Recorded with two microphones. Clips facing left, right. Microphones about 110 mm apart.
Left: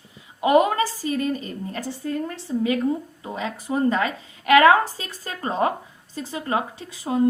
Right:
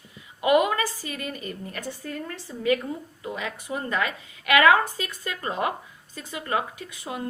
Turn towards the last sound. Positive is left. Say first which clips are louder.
# left 10 dB
turn(degrees=30)  # may be behind; listen again after turning